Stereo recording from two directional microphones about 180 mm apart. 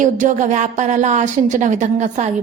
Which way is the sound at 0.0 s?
45° right (ahead or behind).